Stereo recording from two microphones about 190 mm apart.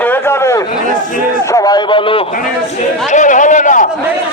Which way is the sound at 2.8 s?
40° left (ahead or behind).